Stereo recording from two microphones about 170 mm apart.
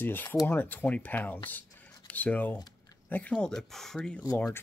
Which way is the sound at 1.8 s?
10° left (ahead or behind).